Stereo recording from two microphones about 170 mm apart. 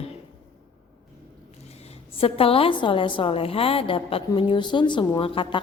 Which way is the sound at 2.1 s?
35° left (ahead or behind).